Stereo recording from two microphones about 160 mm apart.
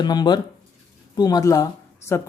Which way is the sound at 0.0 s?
25° left (ahead or behind).